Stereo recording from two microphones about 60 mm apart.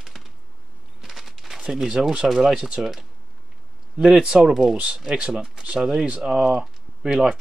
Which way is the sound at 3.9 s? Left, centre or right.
Centre.